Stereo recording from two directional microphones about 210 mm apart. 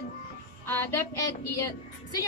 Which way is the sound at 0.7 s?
10° left (ahead or behind).